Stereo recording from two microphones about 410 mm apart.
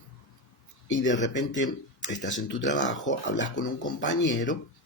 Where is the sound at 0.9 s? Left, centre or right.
Left.